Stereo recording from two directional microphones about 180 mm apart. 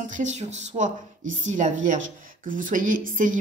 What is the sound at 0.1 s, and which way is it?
A woman's voice, 40° right (ahead or behind).